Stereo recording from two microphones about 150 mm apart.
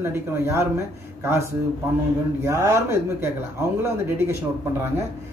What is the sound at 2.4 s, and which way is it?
Speech, 20° right (ahead or behind).